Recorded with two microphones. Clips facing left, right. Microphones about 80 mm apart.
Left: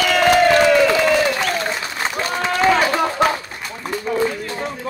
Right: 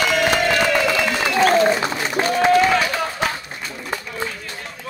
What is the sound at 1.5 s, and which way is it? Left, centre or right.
Applause, right.